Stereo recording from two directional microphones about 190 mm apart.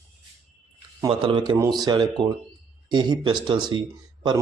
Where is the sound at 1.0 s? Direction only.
25° right (ahead or behind).